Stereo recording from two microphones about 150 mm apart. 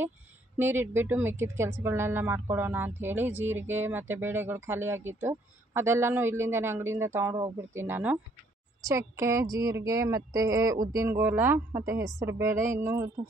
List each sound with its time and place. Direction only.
0.6 s a woman's voice: 15° right (ahead or behind)